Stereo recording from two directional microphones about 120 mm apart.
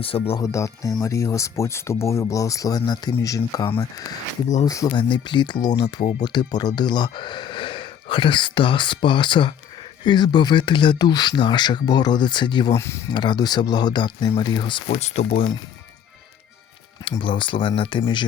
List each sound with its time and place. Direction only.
0.0 s speech: 50° left (ahead or behind)
0.4 s speech: 25° left (ahead or behind)
4.9 s speech: 45° left (ahead or behind)
12.7 s speech: 20° left (ahead or behind)
13.1 s speech: 40° left (ahead or behind)
14.8 s speech: 65° left (ahead or behind)
17.1 s speech: 45° left (ahead or behind)